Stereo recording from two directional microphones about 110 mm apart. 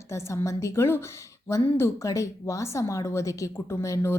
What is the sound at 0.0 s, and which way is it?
Speech, 25° left (ahead or behind).